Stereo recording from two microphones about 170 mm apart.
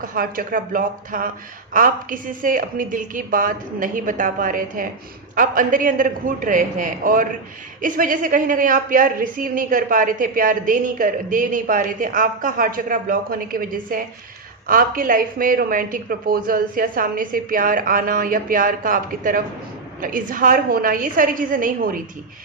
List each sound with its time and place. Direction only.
0.0 s a woman's voice: 55° right (ahead or behind)